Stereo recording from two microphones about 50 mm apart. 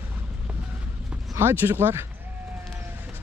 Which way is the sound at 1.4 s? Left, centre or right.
Right.